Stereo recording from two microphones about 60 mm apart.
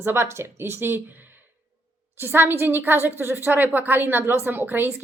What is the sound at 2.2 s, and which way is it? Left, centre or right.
A woman's voice, right.